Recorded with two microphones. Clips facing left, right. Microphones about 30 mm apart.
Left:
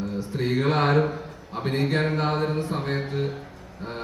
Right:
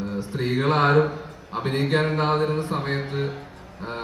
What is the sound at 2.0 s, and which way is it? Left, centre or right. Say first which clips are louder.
Speech: right 2 dB; right.